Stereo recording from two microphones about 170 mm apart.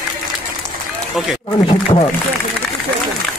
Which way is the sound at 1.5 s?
30° left (ahead or behind).